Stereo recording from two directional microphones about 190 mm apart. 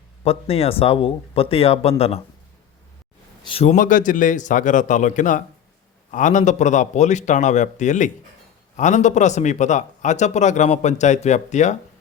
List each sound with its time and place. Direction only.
0.3 s a man's voice: 30° left (ahead or behind)
3.4 s a man's voice: 30° left (ahead or behind)